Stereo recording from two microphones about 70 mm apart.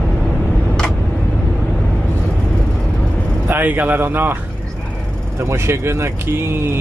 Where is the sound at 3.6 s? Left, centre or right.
Right.